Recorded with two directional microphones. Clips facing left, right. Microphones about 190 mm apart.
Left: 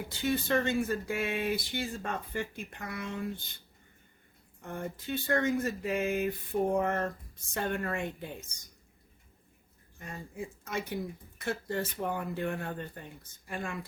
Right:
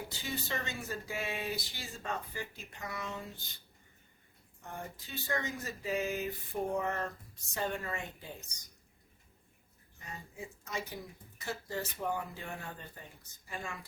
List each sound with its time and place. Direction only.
0.2 s speech: 60° left (ahead or behind)
4.6 s speech: 55° left (ahead or behind)
10.0 s speech: 50° left (ahead or behind)